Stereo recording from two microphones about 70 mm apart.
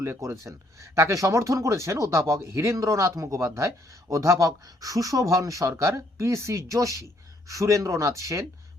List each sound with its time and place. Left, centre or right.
0.0 s speech: right